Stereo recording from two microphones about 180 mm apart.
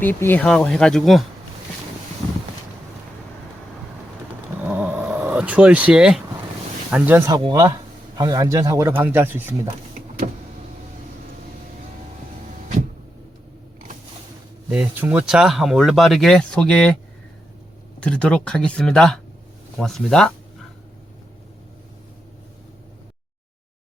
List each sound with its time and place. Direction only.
0.0 s speech: 10° left (ahead or behind)
4.6 s a sound: 10° right (ahead or behind)
6.9 s speech: 10° right (ahead or behind)
14.7 s speech: 5° right (ahead or behind)
18.0 s speech: 5° left (ahead or behind)